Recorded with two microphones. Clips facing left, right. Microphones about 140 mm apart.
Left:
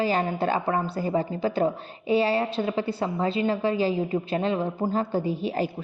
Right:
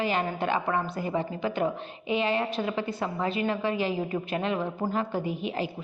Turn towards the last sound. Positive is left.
turn(degrees=30)  # may be behind; listen again after turning